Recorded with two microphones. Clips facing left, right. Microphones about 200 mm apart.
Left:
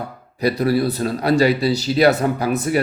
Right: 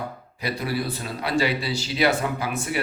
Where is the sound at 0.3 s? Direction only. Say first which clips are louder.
Left 10 dB; 40° left (ahead or behind).